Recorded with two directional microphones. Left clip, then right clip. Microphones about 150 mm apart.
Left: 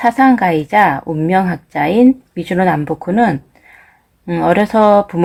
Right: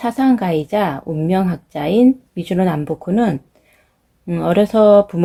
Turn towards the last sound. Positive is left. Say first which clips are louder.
# even
turn(degrees=-30)  # may be behind; listen again after turning